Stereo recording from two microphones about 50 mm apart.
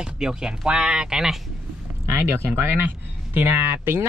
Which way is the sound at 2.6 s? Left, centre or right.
Right.